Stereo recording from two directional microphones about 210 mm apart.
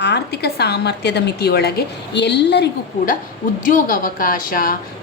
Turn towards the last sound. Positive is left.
turn(degrees=40)  # may be behind; listen again after turning